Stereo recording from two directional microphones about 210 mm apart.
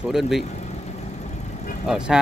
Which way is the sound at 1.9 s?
5° right (ahead or behind).